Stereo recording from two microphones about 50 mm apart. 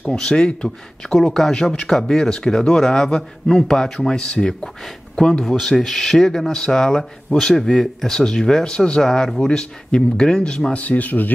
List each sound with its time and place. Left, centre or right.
0.1 s speech: centre
1.1 s speech: centre
1.5 s speech: centre
10.8 s speech: left